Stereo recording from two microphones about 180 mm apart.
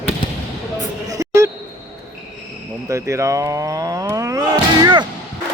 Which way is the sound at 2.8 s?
15° right (ahead or behind).